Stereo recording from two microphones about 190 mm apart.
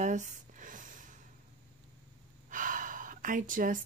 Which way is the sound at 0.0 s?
40° right (ahead or behind).